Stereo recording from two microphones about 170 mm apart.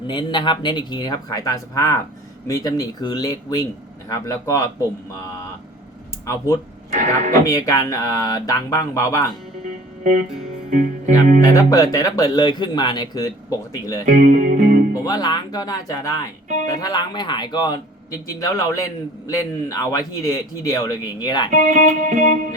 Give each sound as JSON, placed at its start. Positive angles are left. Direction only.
{"t": 0.1, "sound": "speech", "side_deg": 25}
{"t": 6.2, "sound": "speech", "side_deg": 15}
{"t": 6.9, "sound": "music", "side_deg": -50}
{"t": 7.4, "sound": "speech", "side_deg": 20}
{"t": 10.0, "sound": "music", "side_deg": -50}
{"t": 11.4, "sound": "speech", "side_deg": 20}
{"t": 14.0, "sound": "music", "side_deg": -50}
{"t": 15.0, "sound": "speech", "side_deg": 25}
{"t": 21.5, "sound": "music", "side_deg": -45}